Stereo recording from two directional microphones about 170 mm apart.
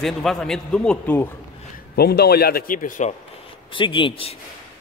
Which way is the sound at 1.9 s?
70° left (ahead or behind).